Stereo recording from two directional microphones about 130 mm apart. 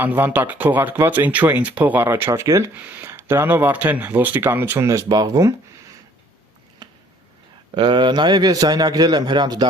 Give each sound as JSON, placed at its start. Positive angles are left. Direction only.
{"t": 0.0, "sound": "speech", "side_deg": -15}
{"t": 6.8, "sound": "a sound", "side_deg": -35}
{"t": 7.8, "sound": "a man's voice", "side_deg": -35}